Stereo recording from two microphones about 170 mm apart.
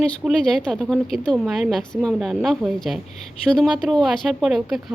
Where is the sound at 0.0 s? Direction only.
5° left (ahead or behind).